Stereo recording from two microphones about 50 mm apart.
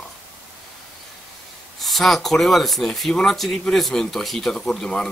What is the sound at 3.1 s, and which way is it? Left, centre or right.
Speech, centre.